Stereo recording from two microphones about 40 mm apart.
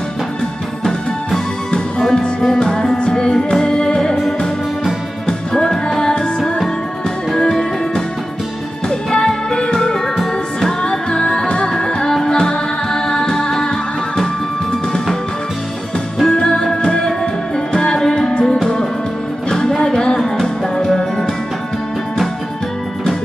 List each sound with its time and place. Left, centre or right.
1.7 s music: centre
5.5 s music: centre
16.3 s music: left